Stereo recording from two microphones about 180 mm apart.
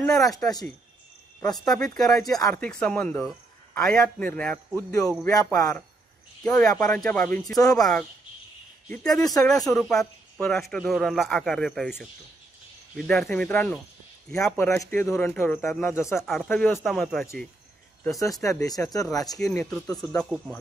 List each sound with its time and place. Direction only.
0.0 s speech: centre (ahead or behind)
1.4 s speech: 20° left (ahead or behind)
1.7 s a man's voice: centre (ahead or behind)
2.2 s speech: 20° left (ahead or behind)
2.6 s a man's voice: 5° left (ahead or behind)
4.7 s speech: 20° left (ahead or behind)
5.5 s a man's voice: 5° left (ahead or behind)
12.9 s a man's voice: 5° left (ahead or behind)
16.3 s a man's voice: 5° left (ahead or behind)
18.0 s speech: 15° left (ahead or behind)